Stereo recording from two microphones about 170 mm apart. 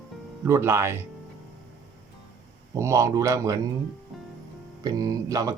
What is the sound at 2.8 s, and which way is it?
Speech, 15° right (ahead or behind).